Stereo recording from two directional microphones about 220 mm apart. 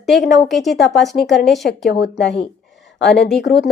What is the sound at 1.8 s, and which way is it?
Speech, 50° left (ahead or behind).